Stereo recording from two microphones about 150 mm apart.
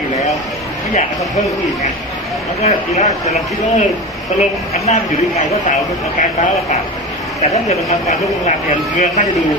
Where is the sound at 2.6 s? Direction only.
50° left (ahead or behind).